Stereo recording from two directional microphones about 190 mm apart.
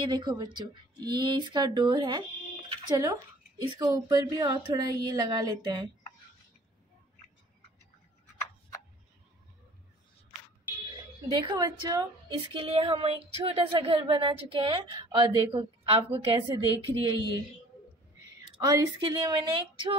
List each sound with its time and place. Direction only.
0.0 s a woman's voice: 20° right (ahead or behind)
11.3 s a woman's voice: 20° right (ahead or behind)
18.6 s a woman's voice: 20° right (ahead or behind)